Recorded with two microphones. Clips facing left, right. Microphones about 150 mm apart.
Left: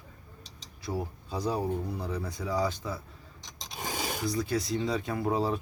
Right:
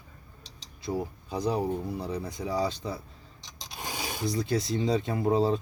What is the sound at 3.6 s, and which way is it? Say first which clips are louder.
Scrape: left 2 dB; centre (ahead or behind).